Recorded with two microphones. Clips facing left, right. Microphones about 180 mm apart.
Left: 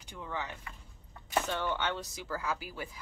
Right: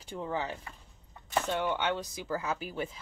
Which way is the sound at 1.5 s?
15° right (ahead or behind).